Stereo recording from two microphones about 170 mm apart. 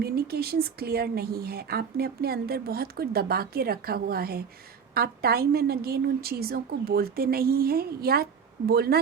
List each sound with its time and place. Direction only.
0.0 s speech: 65° right (ahead or behind)